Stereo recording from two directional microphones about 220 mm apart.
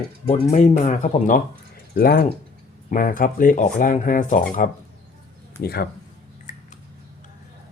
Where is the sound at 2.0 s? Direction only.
40° left (ahead or behind).